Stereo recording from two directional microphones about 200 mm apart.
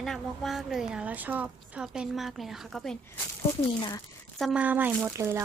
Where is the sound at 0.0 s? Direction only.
Centre (ahead or behind).